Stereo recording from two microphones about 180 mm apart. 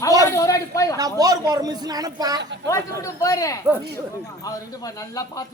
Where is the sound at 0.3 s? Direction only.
15° left (ahead or behind).